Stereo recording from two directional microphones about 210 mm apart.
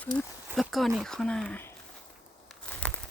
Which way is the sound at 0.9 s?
Centre (ahead or behind).